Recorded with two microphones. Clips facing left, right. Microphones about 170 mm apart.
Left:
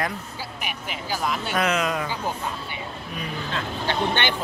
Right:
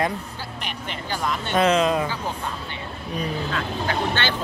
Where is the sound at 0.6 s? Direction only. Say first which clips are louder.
Right 1 dB; 5° left (ahead or behind).